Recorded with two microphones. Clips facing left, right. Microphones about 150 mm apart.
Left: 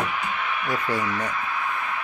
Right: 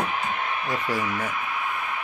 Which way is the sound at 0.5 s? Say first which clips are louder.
Left 1 dB; 25° right (ahead or behind).